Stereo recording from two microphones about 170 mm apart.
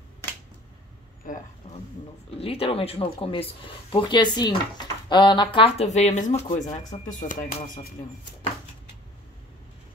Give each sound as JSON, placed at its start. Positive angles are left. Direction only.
{"t": 1.2, "sound": "speech", "side_deg": 50}
{"t": 2.3, "sound": "speech", "side_deg": 35}
{"t": 6.5, "sound": "speech", "side_deg": 20}
{"t": 7.1, "sound": "speech", "side_deg": 50}